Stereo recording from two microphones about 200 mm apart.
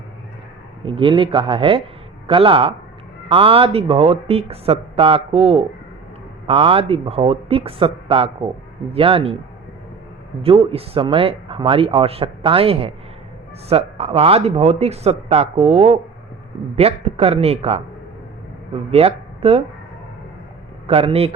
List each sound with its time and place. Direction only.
0.9 s speech: 25° right (ahead or behind)
10.4 s speech: 30° right (ahead or behind)
20.8 s a man's voice: 30° right (ahead or behind)